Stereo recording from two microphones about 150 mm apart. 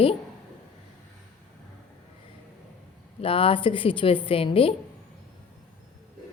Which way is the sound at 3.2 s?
40° left (ahead or behind).